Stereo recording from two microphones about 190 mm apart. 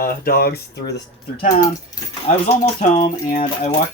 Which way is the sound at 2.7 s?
30° left (ahead or behind).